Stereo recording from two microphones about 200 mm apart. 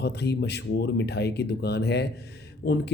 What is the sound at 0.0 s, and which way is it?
Speech, 55° left (ahead or behind).